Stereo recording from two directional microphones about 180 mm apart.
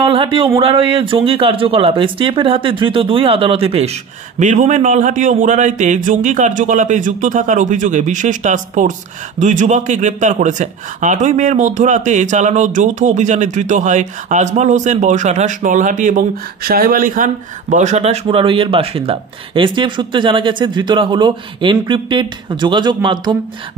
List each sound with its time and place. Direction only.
0.0 s a sound: 30° right (ahead or behind)
0.6 s a man's voice: 30° right (ahead or behind)
4.4 s a man's voice: 45° right (ahead or behind); by 23.3 s 25° right (ahead or behind)